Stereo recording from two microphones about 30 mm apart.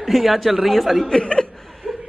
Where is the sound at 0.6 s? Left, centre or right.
Centre.